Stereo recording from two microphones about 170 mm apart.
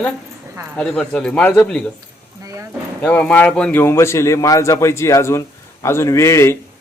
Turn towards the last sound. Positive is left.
turn(degrees=15)  # may be behind; listen again after turning